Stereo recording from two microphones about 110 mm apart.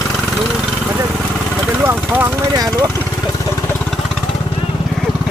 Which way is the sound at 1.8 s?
20° right (ahead or behind).